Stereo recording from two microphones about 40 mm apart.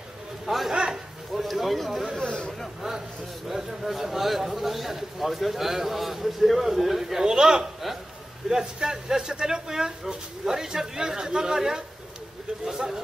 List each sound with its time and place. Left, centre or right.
0.5 s a man's voice: centre
2.2 s speech: left
3.4 s a man's voice: centre